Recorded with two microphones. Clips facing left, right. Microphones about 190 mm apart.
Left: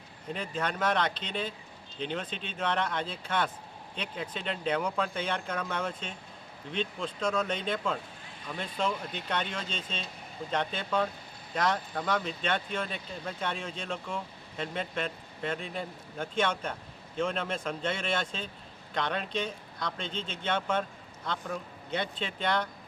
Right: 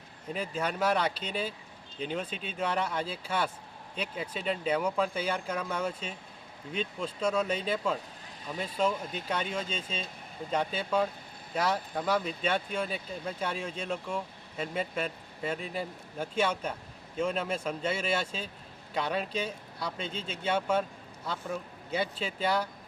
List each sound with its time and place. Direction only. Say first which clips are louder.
0.3 s speech: right 1 dB; 5° right (ahead or behind)